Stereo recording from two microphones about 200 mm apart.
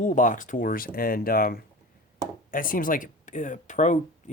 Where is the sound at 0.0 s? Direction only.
40° left (ahead or behind).